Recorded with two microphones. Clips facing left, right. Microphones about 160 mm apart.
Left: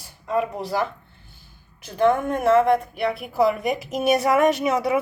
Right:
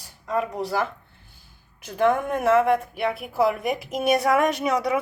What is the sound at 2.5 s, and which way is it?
Speech, 5° right (ahead or behind).